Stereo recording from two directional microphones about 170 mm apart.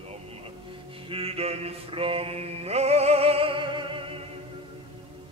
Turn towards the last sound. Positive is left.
turn(degrees=-30)  # may be behind; listen again after turning